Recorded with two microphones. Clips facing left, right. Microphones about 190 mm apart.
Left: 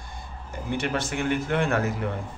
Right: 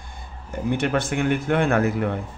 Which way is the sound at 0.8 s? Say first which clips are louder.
Right 3 dB; 55° right (ahead or behind).